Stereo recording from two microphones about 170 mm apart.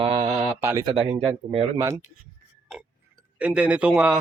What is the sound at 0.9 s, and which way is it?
Speech, 35° right (ahead or behind).